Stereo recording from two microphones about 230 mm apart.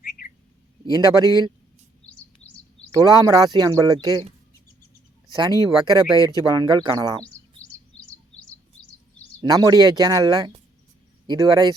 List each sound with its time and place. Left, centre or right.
0.9 s speech: centre
2.4 s chirp: left
2.9 s speech: centre
5.3 s speech: centre
9.4 s speech: centre